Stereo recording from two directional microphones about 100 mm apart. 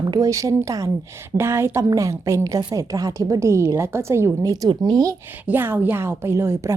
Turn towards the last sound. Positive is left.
turn(degrees=-30)  # may be behind; listen again after turning